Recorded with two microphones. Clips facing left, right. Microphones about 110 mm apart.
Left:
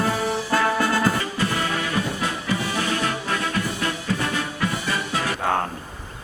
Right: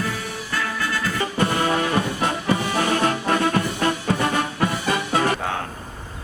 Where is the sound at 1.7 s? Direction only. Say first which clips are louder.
Right 3 dB; 55° right (ahead or behind).